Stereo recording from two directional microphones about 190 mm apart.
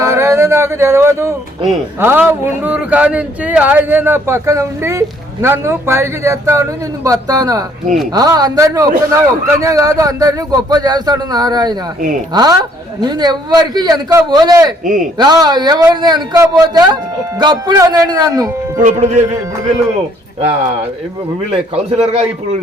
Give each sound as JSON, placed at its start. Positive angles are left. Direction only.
{"t": 0.0, "sound": "a man's voice", "side_deg": -15}
{"t": 18.8, "sound": "speech", "side_deg": -40}
{"t": 21.9, "sound": "speech", "side_deg": -35}